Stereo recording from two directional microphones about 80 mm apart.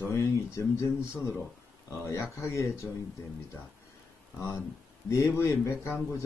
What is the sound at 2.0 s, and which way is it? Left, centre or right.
Speech, left.